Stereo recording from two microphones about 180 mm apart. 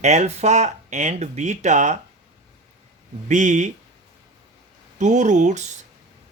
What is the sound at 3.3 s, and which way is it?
Speech, 45° right (ahead or behind).